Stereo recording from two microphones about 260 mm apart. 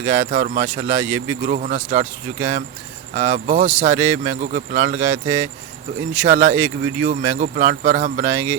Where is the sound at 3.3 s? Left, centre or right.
Right.